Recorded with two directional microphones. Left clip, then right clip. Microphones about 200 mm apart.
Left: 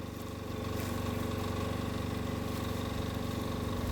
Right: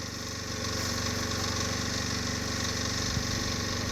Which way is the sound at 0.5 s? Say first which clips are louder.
Right 6 dB; 45° left (ahead or behind).